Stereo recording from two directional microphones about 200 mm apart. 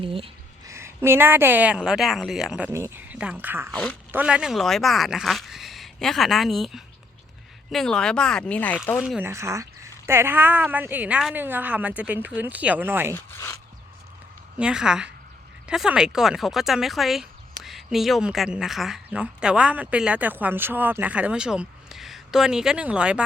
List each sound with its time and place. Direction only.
0.0 s a sound: 25° right (ahead or behind)
0.7 s speech: 15° right (ahead or behind); by 8.8 s 5° left (ahead or behind)
9.0 s speech: 5° right (ahead or behind)
13.1 s speech: 15° left (ahead or behind)
14.6 s speech: 5° right (ahead or behind)